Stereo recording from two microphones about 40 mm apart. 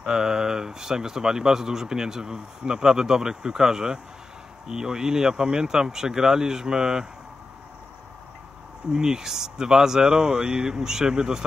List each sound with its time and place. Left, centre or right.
0.0 s speech: centre
8.9 s speech: centre